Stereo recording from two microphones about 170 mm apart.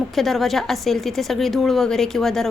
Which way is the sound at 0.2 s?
Centre (ahead or behind).